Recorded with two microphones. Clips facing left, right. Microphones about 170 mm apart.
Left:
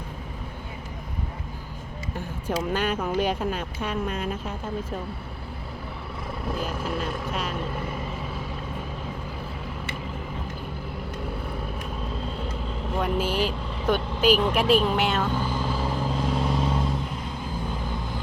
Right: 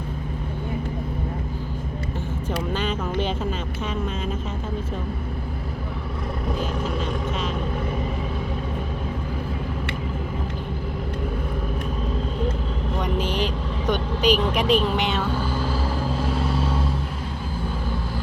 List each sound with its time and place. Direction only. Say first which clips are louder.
2.7 s speech: left 1 dB; 10° left (ahead or behind)
6.5 s vehicle: right 2 dB; centre (ahead or behind)
13.0 s speech: left 1 dB; 5° left (ahead or behind)